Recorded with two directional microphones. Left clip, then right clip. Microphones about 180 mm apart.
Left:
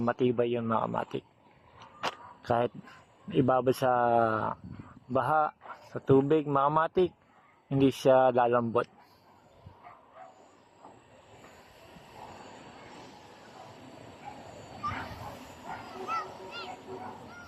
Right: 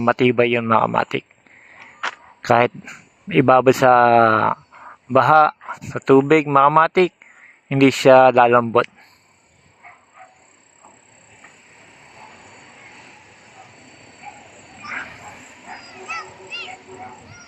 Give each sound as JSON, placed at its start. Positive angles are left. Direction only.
{"t": 0.0, "sound": "speech", "side_deg": -15}
{"t": 2.4, "sound": "a man's voice", "side_deg": -15}
{"t": 16.0, "sound": "a sound", "side_deg": 15}